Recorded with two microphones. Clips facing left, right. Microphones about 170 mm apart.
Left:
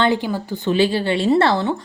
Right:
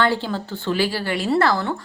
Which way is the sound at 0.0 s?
15° left (ahead or behind).